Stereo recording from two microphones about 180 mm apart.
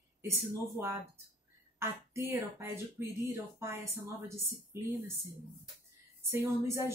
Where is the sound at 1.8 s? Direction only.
15° right (ahead or behind).